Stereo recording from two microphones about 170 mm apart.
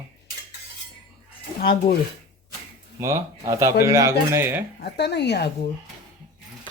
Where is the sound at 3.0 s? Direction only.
20° right (ahead or behind).